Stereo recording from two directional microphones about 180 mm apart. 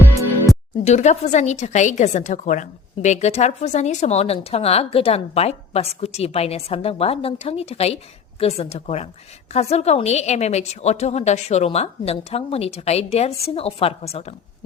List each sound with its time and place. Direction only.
0.5 s music: centre (ahead or behind)
0.9 s a woman's voice: 40° left (ahead or behind)